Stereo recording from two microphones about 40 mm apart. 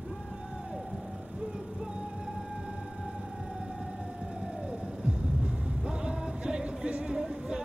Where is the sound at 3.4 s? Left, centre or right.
Centre.